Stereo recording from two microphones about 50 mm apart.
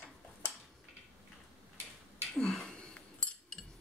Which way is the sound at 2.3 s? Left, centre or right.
Centre.